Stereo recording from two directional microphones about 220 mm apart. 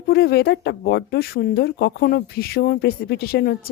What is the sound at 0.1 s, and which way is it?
Speech, 45° left (ahead or behind).